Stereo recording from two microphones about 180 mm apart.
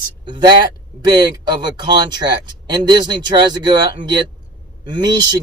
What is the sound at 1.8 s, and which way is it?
Speech, 25° right (ahead or behind).